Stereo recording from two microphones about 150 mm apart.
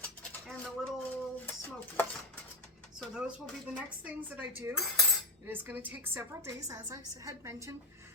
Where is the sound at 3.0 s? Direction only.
5° right (ahead or behind).